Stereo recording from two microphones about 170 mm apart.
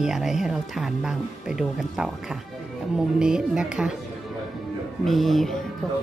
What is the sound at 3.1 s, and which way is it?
Speech, 5° right (ahead or behind).